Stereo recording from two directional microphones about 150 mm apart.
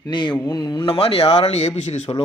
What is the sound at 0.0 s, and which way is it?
Speech, 30° left (ahead or behind).